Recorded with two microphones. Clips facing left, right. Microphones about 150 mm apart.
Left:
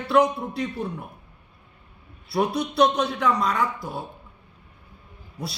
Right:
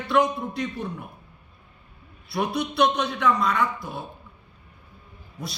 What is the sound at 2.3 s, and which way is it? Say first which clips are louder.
A man's voice: left 2 dB; 35° left (ahead or behind).